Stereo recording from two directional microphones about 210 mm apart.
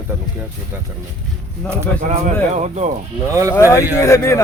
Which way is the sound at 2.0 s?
35° right (ahead or behind).